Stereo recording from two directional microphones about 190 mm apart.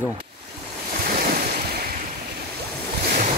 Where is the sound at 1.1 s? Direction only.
50° right (ahead or behind).